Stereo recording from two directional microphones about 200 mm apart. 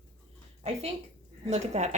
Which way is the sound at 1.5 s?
35° right (ahead or behind).